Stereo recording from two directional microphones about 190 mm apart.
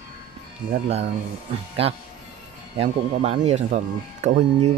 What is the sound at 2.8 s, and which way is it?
Speech, 35° right (ahead or behind).